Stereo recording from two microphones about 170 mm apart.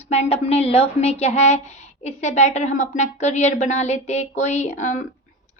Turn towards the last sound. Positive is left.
turn(degrees=45)  # may be behind; listen again after turning